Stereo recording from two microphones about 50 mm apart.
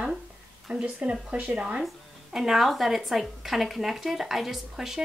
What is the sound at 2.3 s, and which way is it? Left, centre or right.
Music, centre.